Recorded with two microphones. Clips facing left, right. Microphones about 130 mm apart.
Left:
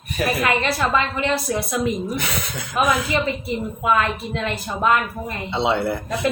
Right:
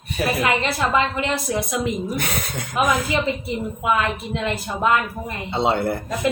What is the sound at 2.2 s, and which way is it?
Speech, 50° right (ahead or behind).